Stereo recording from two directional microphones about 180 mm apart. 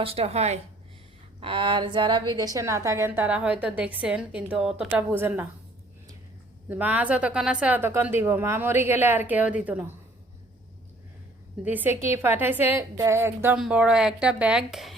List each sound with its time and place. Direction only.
0.0 s a woman's voice: 30° right (ahead or behind); by 5.5 s 10° right (ahead or behind)
6.7 s a woman's voice: 10° right (ahead or behind)
11.6 s a woman's voice: 10° right (ahead or behind)